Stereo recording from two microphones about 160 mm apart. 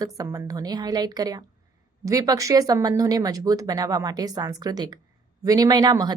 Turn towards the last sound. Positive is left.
turn(degrees=-25)  # may be behind; listen again after turning